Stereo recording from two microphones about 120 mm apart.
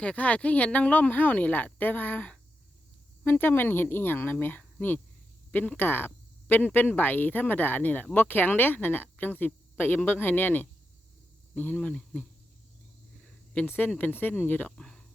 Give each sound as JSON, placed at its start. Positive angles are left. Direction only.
{"t": 0.0, "sound": "speech", "side_deg": 10}
{"t": 13.5, "sound": "speech", "side_deg": 15}